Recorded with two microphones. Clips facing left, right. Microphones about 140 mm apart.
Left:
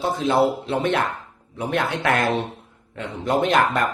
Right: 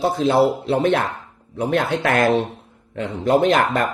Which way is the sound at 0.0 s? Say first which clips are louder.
Right 3 dB; 40° right (ahead or behind).